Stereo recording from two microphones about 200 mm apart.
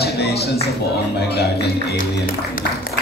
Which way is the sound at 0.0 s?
55° left (ahead or behind).